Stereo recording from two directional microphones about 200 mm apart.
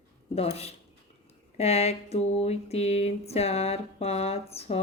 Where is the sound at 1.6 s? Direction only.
30° left (ahead or behind).